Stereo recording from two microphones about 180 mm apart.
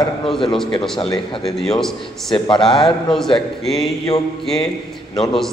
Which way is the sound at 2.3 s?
25° left (ahead or behind).